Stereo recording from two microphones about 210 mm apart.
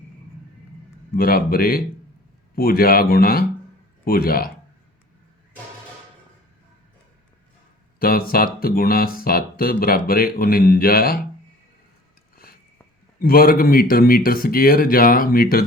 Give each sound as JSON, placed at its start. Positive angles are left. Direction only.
{"t": 1.1, "sound": "speech", "side_deg": 45}
{"t": 7.9, "sound": "speech", "side_deg": 45}
{"t": 13.1, "sound": "speech", "side_deg": 45}